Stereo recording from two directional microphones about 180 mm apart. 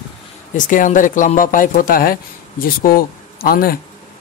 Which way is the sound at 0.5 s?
45° left (ahead or behind).